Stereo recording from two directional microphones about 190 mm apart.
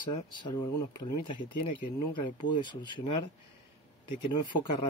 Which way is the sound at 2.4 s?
25° left (ahead or behind).